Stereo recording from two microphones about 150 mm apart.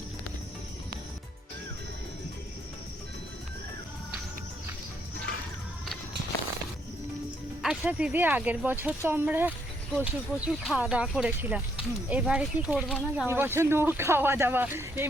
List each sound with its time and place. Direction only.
7.6 s speech: 5° right (ahead or behind)